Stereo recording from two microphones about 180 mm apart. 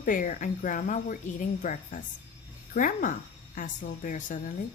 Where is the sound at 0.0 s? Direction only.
50° left (ahead or behind).